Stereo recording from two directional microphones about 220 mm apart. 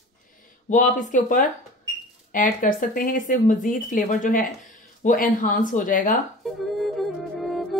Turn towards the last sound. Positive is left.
turn(degrees=0)  # may be behind; listen again after turning